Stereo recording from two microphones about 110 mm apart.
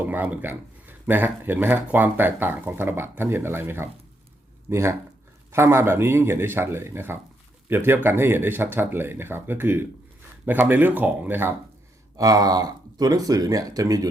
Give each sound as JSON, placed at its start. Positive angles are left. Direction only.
{"t": 0.0, "sound": "speech", "side_deg": -15}
{"t": 12.1, "sound": "speech", "side_deg": -35}